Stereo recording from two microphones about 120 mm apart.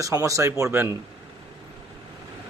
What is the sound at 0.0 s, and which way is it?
Speech, 25° right (ahead or behind).